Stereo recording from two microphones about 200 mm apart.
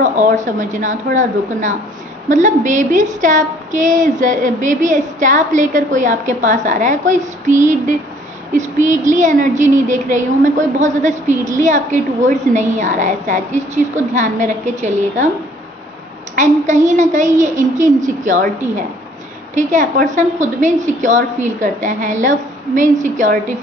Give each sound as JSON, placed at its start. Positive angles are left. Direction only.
{"t": 0.0, "sound": "a woman's voice", "side_deg": -40}
{"t": 8.8, "sound": "a woman's voice", "side_deg": -40}
{"t": 16.3, "sound": "a woman's voice", "side_deg": -35}
{"t": 19.5, "sound": "a woman's voice", "side_deg": -40}